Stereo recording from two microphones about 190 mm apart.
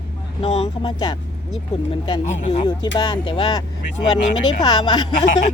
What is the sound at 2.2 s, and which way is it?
Speech, 35° left (ahead or behind).